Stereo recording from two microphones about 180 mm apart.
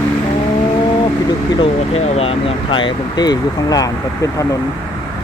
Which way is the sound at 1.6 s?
35° left (ahead or behind).